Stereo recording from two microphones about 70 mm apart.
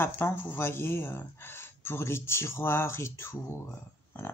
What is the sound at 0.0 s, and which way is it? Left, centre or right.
Speech, left.